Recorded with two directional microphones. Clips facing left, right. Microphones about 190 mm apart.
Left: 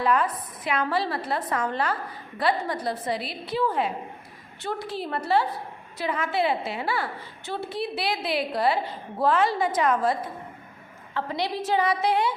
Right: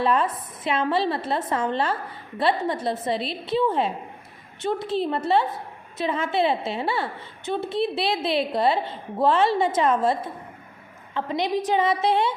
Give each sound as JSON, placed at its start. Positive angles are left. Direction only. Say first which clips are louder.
{"t": 0.0, "sound": "a woman's voice", "louder": "right 1 dB", "side_deg": -25}